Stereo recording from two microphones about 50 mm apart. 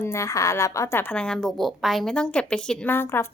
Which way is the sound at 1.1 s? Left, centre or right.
Left.